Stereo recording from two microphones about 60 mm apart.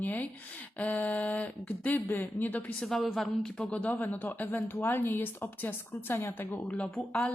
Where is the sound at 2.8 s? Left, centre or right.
Centre.